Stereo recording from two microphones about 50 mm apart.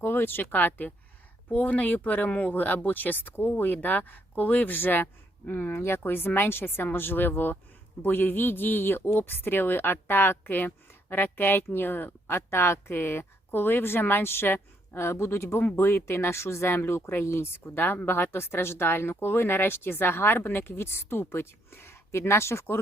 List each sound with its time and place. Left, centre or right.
0.0 s speech: left
5.7 s speech: left
6.0 s speech: left